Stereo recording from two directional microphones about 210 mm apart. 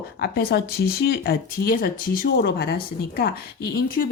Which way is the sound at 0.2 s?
50° left (ahead or behind).